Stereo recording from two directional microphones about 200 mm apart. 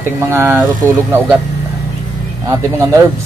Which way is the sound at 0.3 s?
10° right (ahead or behind).